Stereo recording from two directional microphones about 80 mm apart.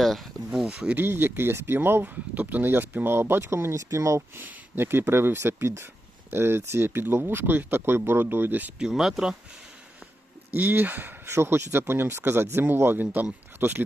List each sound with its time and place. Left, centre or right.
0.0 s speech: centre
0.9 s speech: right
4.4 s speech: right
8.8 s speech: centre
10.5 s speech: right